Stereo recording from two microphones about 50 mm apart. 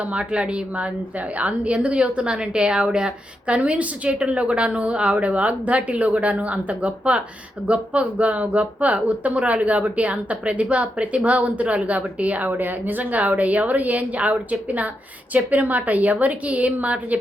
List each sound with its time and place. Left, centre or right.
0.1 s a woman's voice: right